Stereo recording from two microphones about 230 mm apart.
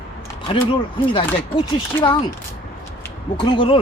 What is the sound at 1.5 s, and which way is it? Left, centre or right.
Speech, centre.